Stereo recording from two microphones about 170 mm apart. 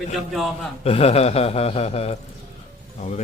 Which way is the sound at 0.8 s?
35° left (ahead or behind).